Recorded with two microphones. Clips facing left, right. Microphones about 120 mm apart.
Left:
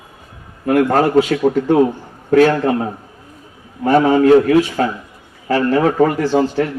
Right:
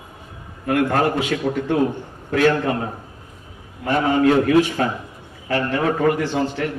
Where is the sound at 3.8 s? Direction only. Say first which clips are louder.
Left 6 dB; 40° left (ahead or behind).